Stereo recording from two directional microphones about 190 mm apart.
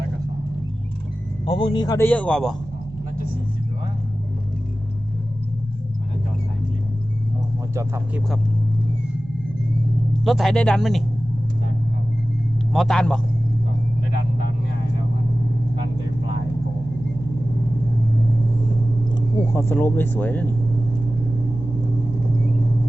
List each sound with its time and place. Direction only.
1.5 s speech: 25° left (ahead or behind)
2.0 s speech: 5° left (ahead or behind)
7.8 s speech: 15° right (ahead or behind)
10.2 s speech: centre (ahead or behind)
12.7 s speech: centre (ahead or behind)
19.5 s speech: 10° left (ahead or behind)